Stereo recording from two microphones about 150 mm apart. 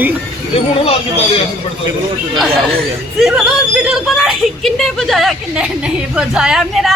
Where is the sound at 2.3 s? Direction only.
Centre (ahead or behind).